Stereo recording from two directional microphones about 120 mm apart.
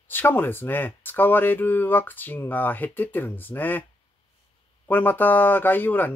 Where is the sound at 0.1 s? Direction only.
15° left (ahead or behind).